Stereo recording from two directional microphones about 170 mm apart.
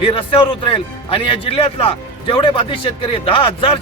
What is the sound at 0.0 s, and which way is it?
A man's voice, 30° left (ahead or behind).